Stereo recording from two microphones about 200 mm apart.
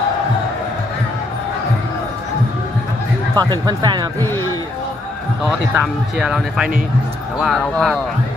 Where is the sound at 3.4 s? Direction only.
20° right (ahead or behind).